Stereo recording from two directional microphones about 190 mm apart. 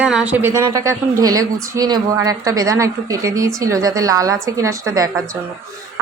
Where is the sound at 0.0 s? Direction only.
5° right (ahead or behind).